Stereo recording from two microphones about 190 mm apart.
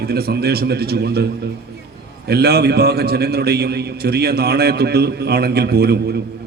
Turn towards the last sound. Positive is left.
turn(degrees=-60)  # may be behind; listen again after turning